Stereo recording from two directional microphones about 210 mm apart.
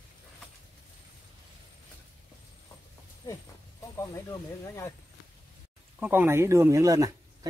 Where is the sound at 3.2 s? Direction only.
15° left (ahead or behind).